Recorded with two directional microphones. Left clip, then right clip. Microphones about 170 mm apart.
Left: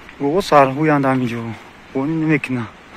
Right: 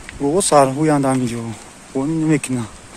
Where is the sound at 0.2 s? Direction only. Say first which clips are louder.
Left 1 dB; 20° right (ahead or behind).